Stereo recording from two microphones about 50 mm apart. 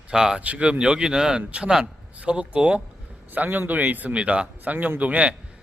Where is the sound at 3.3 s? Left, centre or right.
Right.